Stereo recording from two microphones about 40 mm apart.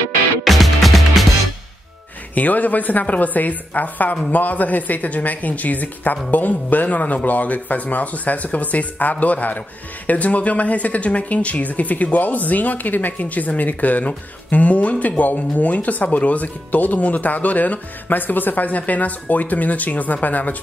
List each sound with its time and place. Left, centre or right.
0.4 s music: centre
2.3 s a woman's voice: left